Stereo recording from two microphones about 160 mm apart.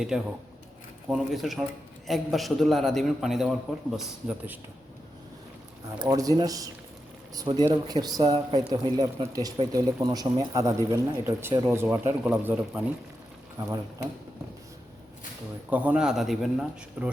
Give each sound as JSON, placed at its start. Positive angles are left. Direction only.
{"t": 0.1, "sound": "a man's voice", "side_deg": -5}
{"t": 6.0, "sound": "speech", "side_deg": -25}
{"t": 13.6, "sound": "speech", "side_deg": -25}
{"t": 15.7, "sound": "a man's voice", "side_deg": -10}